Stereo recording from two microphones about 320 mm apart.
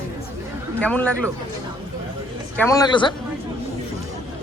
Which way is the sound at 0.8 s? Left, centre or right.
Centre.